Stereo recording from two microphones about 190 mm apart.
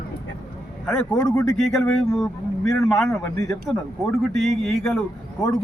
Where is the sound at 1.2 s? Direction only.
20° left (ahead or behind).